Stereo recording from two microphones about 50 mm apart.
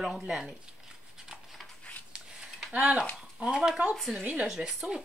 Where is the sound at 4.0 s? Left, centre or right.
Centre.